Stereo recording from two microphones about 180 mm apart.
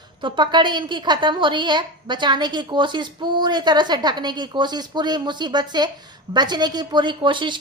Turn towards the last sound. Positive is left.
turn(degrees=-25)  # may be behind; listen again after turning